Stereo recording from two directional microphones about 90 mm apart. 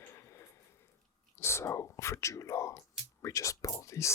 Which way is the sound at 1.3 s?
30° left (ahead or behind).